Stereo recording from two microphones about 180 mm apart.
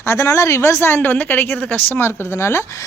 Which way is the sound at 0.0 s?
15° left (ahead or behind).